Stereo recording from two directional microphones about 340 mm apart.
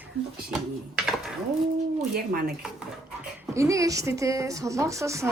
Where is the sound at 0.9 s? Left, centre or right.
Centre.